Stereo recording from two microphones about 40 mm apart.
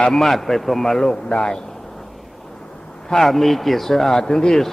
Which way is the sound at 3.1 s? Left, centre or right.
Centre.